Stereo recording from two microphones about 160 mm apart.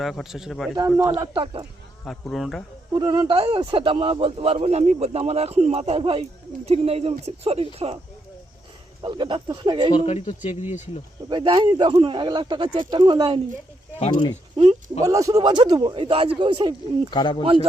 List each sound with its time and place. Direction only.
0.0 s a man's voice: centre (ahead or behind)
0.9 s a man's voice: 15° right (ahead or behind)
1.3 s speech: 30° right (ahead or behind)
2.0 s a man's voice: centre (ahead or behind)
3.0 s speech: 30° right (ahead or behind)
9.0 s speech: 30° right (ahead or behind)
9.9 s speech: 40° left (ahead or behind)
11.3 s speech: 30° right (ahead or behind)
14.0 s speech: 30° left (ahead or behind)
14.5 s speech: 30° right (ahead or behind)
15.0 s speech: 20° right (ahead or behind)
17.1 s speech: 30° left (ahead or behind)
17.4 s speech: 35° right (ahead or behind)